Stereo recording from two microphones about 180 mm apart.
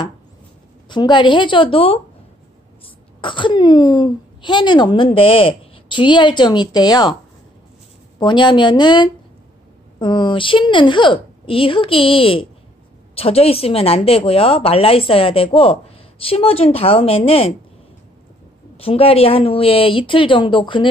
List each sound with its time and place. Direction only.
0.8 s speech: 25° left (ahead or behind)
3.2 s speech: 25° left (ahead or behind)
8.2 s a woman's voice: 25° left (ahead or behind)
18.8 s a woman's voice: 30° left (ahead or behind)